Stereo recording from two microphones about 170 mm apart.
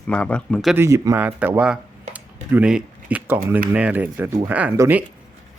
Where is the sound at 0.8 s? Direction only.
15° right (ahead or behind).